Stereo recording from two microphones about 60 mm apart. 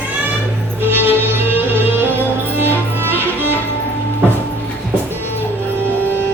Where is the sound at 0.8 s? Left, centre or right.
Right.